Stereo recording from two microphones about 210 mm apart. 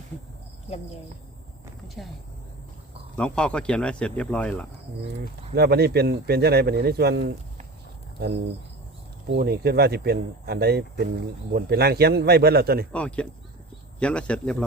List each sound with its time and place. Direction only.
3.2 s speech: 5° left (ahead or behind)
5.5 s speech: 50° right (ahead or behind)
9.3 s speech: 50° right (ahead or behind)
12.9 s speech: 5° left (ahead or behind)